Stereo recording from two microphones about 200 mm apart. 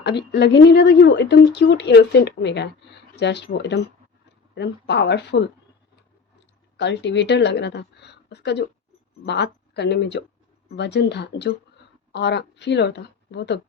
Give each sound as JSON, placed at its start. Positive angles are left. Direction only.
{"t": 0.0, "sound": "speech", "side_deg": 60}
{"t": 6.7, "sound": "a woman's voice", "side_deg": 60}